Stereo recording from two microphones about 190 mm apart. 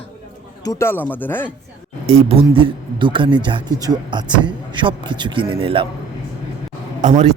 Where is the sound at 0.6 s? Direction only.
15° left (ahead or behind).